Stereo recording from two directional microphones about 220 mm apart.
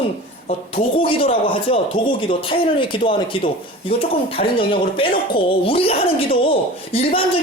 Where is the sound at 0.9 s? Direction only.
25° left (ahead or behind).